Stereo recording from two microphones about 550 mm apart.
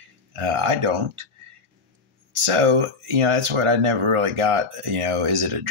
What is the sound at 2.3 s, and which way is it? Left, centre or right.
Speech, right.